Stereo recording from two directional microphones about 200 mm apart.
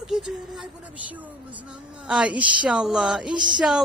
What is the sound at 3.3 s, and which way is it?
Speech, 20° right (ahead or behind).